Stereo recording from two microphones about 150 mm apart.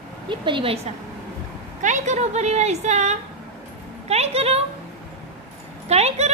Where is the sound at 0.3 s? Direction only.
35° right (ahead or behind).